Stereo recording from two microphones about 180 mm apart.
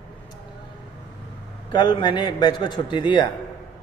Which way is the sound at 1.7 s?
25° left (ahead or behind).